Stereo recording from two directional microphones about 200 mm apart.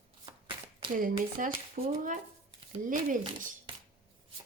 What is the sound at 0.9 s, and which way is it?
A woman's voice, 45° right (ahead or behind).